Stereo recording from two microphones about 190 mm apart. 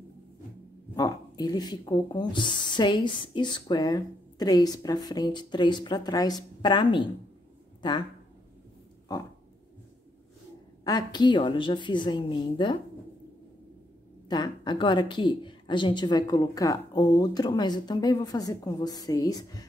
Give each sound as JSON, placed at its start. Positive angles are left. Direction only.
{"t": 0.9, "sound": "speech", "side_deg": 20}
{"t": 10.8, "sound": "speech", "side_deg": 20}
{"t": 14.3, "sound": "speech", "side_deg": 20}